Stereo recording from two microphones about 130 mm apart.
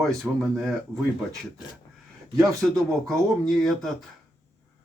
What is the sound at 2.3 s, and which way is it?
Speech, 25° right (ahead or behind).